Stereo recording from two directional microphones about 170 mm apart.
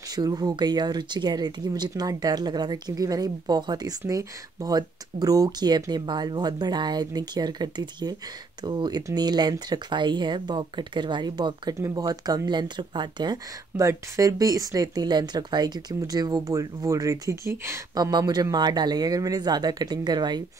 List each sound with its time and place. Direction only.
0.1 s speech: 25° right (ahead or behind)